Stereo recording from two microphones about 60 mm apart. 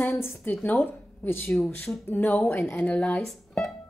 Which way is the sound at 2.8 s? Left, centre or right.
Left.